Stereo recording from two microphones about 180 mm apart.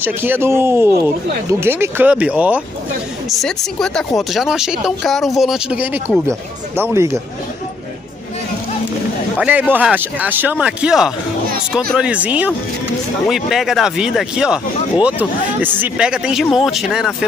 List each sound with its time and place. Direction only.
0.0 s speech: 10° right (ahead or behind)
3.3 s speech: centre (ahead or behind); by 7.2 s 15° right (ahead or behind)
9.4 s speech: 10° right (ahead or behind)